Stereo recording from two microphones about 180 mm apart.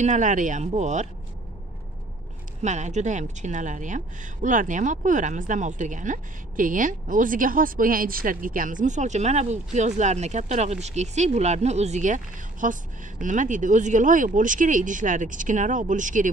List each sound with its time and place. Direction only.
0.0 s speech: 45° right (ahead or behind)
2.6 s a woman's voice: 40° right (ahead or behind)